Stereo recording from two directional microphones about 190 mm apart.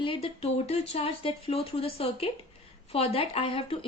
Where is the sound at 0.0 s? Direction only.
30° left (ahead or behind).